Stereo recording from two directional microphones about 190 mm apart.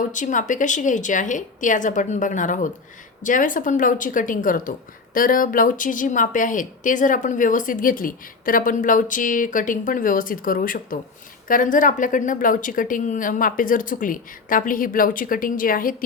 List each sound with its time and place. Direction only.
0.1 s a woman's voice: 40° left (ahead or behind)